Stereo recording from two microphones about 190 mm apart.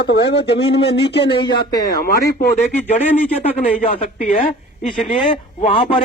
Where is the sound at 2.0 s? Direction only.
50° left (ahead or behind).